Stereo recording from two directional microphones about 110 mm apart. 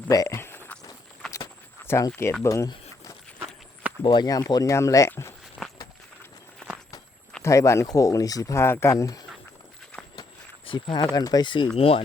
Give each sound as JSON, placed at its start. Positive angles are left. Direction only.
{"t": 0.1, "sound": "speech", "side_deg": 35}
{"t": 0.3, "sound": "walk", "side_deg": 20}
{"t": 1.8, "sound": "speech", "side_deg": 25}
{"t": 4.0, "sound": "speech", "side_deg": 40}
{"t": 5.6, "sound": "run", "side_deg": 0}
{"t": 7.4, "sound": "speech", "side_deg": 25}
{"t": 10.7, "sound": "speech", "side_deg": 45}
{"t": 11.8, "sound": "speech", "side_deg": 60}